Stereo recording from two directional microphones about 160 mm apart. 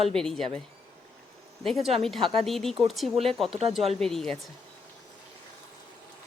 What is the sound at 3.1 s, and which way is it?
Speech, 40° right (ahead or behind).